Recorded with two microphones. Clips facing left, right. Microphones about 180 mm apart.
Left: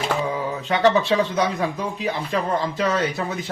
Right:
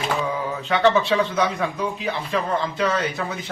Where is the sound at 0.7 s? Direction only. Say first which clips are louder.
Even; 40° left (ahead or behind).